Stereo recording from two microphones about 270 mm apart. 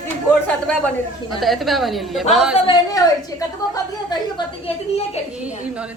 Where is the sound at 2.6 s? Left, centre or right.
Centre.